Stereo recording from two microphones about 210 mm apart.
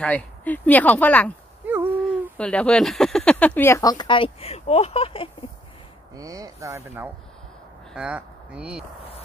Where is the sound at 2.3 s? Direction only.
5° left (ahead or behind); by 5.3 s 25° left (ahead or behind).